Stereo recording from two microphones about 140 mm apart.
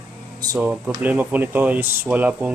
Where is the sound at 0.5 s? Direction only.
10° right (ahead or behind).